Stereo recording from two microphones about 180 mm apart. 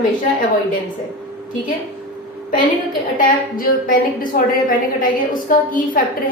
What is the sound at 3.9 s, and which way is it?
A woman's voice, 50° left (ahead or behind).